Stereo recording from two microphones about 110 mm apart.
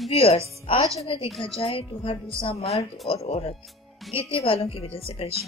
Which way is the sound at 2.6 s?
Centre (ahead or behind).